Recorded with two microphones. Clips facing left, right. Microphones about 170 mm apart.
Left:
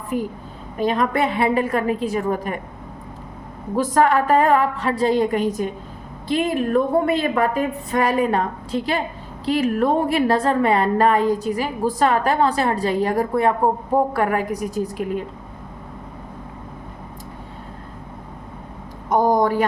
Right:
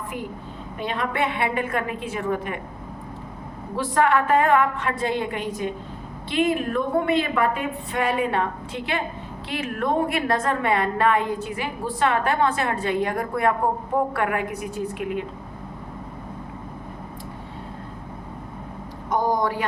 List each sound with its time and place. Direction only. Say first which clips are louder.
0.8 s a woman's voice: left 6 dB; 40° left (ahead or behind)
3.8 s a woman's voice: left 3 dB; 40° left (ahead or behind)
19.1 s speech: left 6 dB; 45° left (ahead or behind)